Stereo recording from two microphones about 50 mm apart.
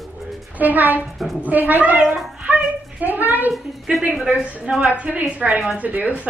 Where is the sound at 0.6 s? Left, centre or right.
Right.